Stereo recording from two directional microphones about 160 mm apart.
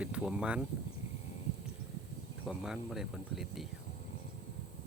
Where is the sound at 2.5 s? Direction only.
5° right (ahead or behind).